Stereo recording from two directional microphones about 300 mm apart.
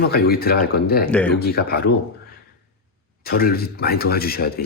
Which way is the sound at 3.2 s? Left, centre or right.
Left.